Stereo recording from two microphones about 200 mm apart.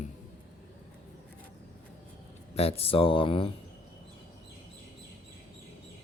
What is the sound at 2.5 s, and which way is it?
Speech, 30° left (ahead or behind).